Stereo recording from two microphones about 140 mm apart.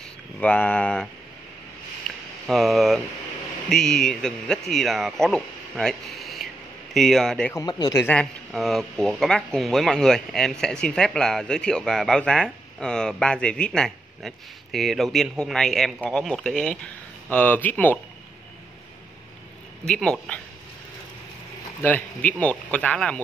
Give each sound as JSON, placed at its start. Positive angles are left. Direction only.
{"t": 0.4, "sound": "speech", "side_deg": 10}
{"t": 2.0, "sound": "a sound", "side_deg": 0}
{"t": 3.6, "sound": "speech", "side_deg": 5}
{"t": 7.5, "sound": "speech", "side_deg": 25}
{"t": 8.1, "sound": "speech", "side_deg": 5}
{"t": 19.9, "sound": "speech", "side_deg": 5}
{"t": 21.8, "sound": "speech", "side_deg": 10}